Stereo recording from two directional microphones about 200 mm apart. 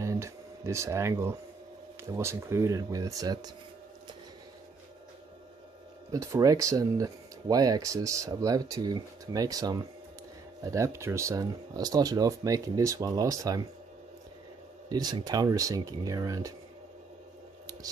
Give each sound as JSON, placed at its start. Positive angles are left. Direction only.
{"t": 0.0, "sound": "a sound", "side_deg": -15}
{"t": 2.0, "sound": "speech", "side_deg": -15}
{"t": 6.1, "sound": "speech", "side_deg": -15}
{"t": 14.9, "sound": "speech", "side_deg": -20}